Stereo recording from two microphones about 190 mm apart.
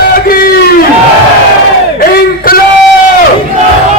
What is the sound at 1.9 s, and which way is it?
Battle cry, 55° left (ahead or behind).